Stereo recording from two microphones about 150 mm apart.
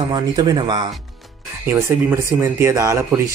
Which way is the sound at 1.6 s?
15° right (ahead or behind).